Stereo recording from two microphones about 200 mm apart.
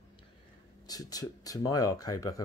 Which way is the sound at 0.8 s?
20° left (ahead or behind).